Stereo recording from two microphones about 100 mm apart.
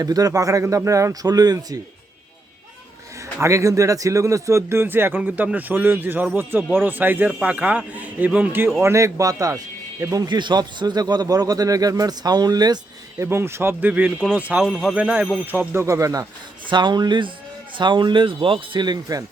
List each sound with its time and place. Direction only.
0.0 s a man's voice: 40° right (ahead or behind)
3.4 s a man's voice: 30° right (ahead or behind)
8.8 s a man's voice: 30° right (ahead or behind)
13.2 s a man's voice: 25° right (ahead or behind)
14.7 s speech: centre (ahead or behind)
14.9 s a man's voice: 15° right (ahead or behind)
15.7 s a man's voice: 30° right (ahead or behind)
16.6 s speech: 50° right (ahead or behind)